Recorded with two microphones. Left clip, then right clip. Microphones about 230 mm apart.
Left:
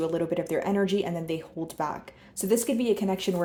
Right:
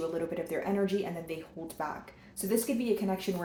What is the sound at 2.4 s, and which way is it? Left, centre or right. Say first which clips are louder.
Speech: left 6 dB; left.